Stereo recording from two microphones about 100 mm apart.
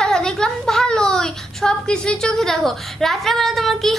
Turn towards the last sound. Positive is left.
turn(degrees=0)  # may be behind; listen again after turning